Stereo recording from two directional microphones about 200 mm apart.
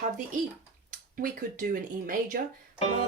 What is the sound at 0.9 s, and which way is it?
Speech, 45° right (ahead or behind).